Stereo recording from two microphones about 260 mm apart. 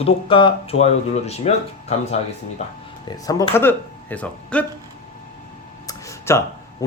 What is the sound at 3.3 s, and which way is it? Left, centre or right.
Speech, centre.